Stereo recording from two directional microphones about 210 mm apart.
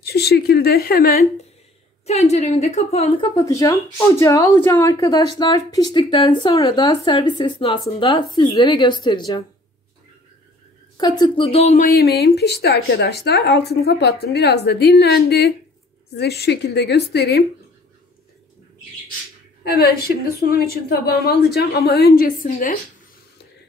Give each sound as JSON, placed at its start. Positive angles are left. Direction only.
{"t": 0.0, "sound": "speech", "side_deg": 50}
{"t": 2.0, "sound": "a woman's voice", "side_deg": 30}
{"t": 11.0, "sound": "speech", "side_deg": 20}
{"t": 19.7, "sound": "speech", "side_deg": 45}